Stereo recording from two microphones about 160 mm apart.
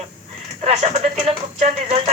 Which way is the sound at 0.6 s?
45° right (ahead or behind).